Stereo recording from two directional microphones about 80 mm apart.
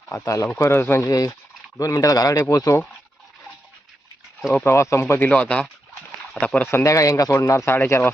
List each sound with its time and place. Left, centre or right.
0.1 s speech: left
1.0 s speech: left
4.6 s speech: left
5.3 s speech: centre
6.7 s speech: left